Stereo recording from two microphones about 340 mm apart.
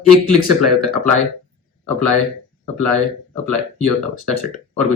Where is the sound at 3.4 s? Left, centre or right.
Right.